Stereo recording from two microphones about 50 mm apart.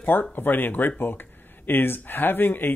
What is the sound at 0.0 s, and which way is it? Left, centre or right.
Speech, left.